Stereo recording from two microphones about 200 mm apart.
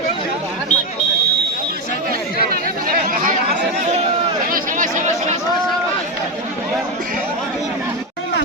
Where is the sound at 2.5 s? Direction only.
45° right (ahead or behind).